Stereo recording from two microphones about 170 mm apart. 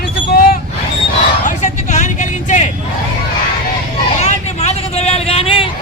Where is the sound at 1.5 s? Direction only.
45° left (ahead or behind).